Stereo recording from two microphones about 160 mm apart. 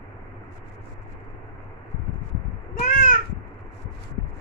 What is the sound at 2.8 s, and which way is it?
Crow, 50° left (ahead or behind).